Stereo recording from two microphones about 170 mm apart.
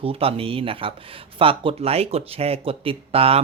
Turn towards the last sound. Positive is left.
turn(degrees=-35)  # may be behind; listen again after turning